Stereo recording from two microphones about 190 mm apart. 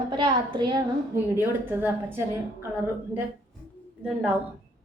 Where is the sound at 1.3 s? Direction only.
10° right (ahead or behind).